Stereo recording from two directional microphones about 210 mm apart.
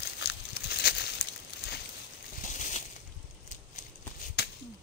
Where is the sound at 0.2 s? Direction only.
50° left (ahead or behind).